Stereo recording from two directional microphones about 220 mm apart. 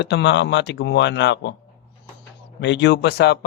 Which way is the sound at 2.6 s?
50° left (ahead or behind).